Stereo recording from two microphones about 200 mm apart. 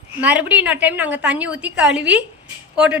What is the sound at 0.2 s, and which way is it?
A woman's voice, 5° right (ahead or behind).